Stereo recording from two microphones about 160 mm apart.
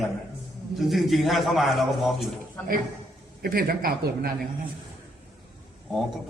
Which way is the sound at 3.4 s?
70° right (ahead or behind).